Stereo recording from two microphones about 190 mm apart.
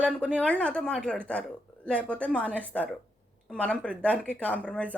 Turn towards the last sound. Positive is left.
turn(degrees=5)  # may be behind; listen again after turning